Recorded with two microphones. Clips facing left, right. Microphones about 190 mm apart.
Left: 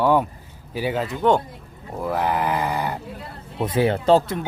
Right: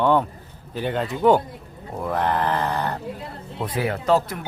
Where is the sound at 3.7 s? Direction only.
30° left (ahead or behind).